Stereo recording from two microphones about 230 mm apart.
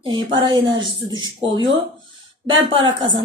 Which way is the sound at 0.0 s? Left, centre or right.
Centre.